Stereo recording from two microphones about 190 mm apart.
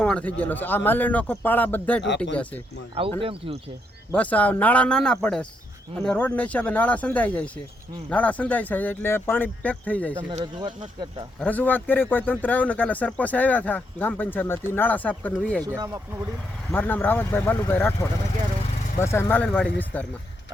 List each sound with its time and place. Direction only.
0.0 s speech: 5° left (ahead or behind)
2.0 s speech: 70° left (ahead or behind)
2.9 s speech: 30° right (ahead or behind)
4.1 s speech: 5° left (ahead or behind)
11.3 s speech: 10° left (ahead or behind)
15.6 s speech: 15° right (ahead or behind)
16.7 s speech: 10° left (ahead or behind)